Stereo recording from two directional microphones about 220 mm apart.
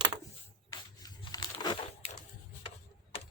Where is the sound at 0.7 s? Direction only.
20° left (ahead or behind).